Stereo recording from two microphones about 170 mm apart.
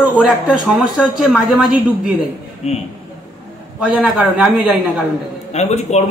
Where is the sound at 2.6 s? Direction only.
40° left (ahead or behind).